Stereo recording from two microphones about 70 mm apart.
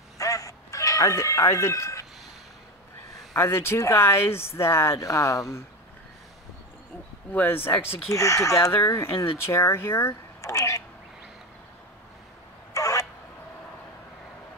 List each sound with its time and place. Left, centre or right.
0.2 s chicken: left
3.3 s speech: left
5.0 s speech: left
7.3 s speech: left
8.1 s speech: left
12.7 s a sound: left